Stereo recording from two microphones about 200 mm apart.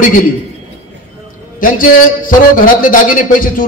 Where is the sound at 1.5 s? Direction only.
45° left (ahead or behind).